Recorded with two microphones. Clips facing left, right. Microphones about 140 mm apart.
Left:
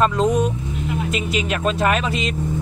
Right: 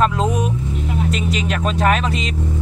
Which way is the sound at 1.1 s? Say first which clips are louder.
Right 1 dB; 5° left (ahead or behind).